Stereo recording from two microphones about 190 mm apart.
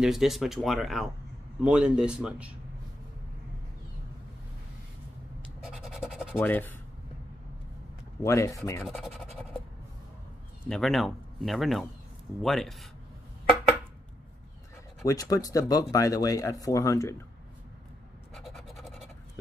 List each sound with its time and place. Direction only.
0.0 s speech: centre (ahead or behind)
5.7 s scratch: centre (ahead or behind)
6.3 s speech: 10° left (ahead or behind)
8.2 s speech: 15° left (ahead or behind)
8.8 s scratch: centre (ahead or behind)
10.7 s speech: centre (ahead or behind)
15.0 s speech: 20° left (ahead or behind)
18.3 s scratch: centre (ahead or behind)